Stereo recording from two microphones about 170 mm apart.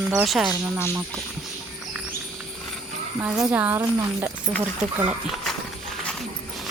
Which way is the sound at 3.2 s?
10° right (ahead or behind).